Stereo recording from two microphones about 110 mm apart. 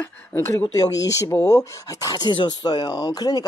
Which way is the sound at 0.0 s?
15° left (ahead or behind).